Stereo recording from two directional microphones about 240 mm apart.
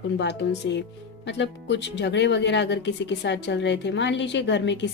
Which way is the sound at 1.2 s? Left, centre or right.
Left.